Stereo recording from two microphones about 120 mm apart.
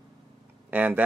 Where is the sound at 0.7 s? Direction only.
15° right (ahead or behind).